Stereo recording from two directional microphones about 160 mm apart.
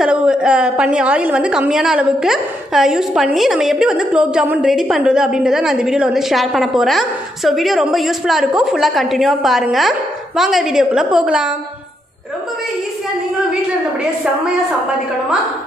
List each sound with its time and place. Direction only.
0.0 s a woman's voice: 5° right (ahead or behind)